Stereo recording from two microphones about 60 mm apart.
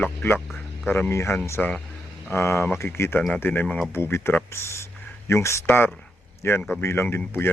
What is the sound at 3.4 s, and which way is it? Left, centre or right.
Speech, left.